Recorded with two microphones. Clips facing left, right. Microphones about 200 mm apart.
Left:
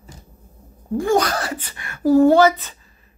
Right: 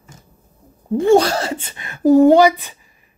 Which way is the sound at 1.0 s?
25° right (ahead or behind).